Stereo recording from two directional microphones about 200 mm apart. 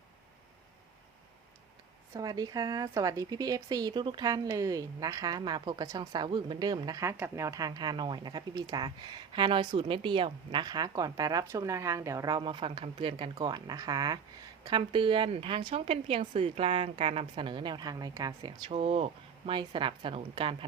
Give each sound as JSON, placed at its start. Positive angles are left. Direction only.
{"t": 2.1, "sound": "speech", "side_deg": -20}